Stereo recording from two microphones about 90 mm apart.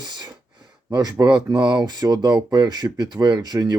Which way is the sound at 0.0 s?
50° right (ahead or behind).